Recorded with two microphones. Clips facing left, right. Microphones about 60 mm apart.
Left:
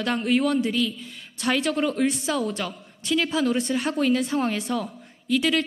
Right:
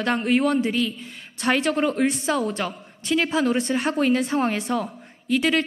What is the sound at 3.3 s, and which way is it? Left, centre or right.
A woman's voice, right.